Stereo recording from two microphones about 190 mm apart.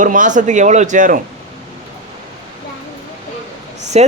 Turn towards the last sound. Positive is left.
turn(degrees=-35)  # may be behind; listen again after turning